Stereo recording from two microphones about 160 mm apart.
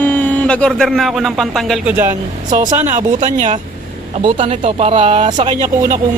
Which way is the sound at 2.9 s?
50° right (ahead or behind).